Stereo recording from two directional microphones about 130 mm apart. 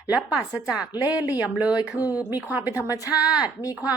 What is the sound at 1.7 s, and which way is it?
Speech, 25° left (ahead or behind).